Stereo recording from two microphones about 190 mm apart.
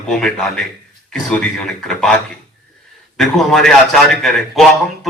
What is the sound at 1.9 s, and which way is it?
Speech, centre (ahead or behind).